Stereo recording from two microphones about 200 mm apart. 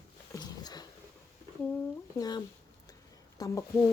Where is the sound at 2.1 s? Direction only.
20° left (ahead or behind).